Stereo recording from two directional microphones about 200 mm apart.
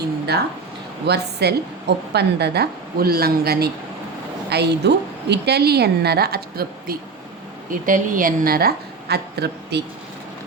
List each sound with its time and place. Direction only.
1.0 s a woman's voice: 55° right (ahead or behind)